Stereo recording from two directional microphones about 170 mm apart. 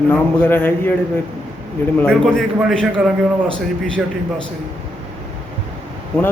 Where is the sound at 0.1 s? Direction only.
10° left (ahead or behind).